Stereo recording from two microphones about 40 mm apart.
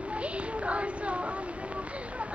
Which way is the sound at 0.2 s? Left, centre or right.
Right.